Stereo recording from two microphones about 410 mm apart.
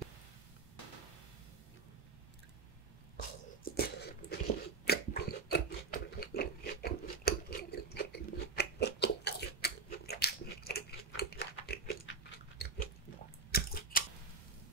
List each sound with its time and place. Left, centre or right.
3.6 s a sound: left
4.8 s chewing: left
12.5 s biting: left
13.5 s chewing: left